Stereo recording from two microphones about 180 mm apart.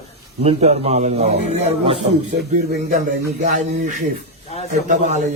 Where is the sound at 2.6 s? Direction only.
55° right (ahead or behind).